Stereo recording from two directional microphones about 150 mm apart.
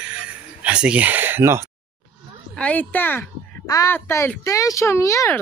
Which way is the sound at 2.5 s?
10° left (ahead or behind).